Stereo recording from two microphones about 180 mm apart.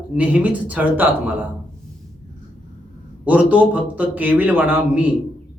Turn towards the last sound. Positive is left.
turn(degrees=-10)  # may be behind; listen again after turning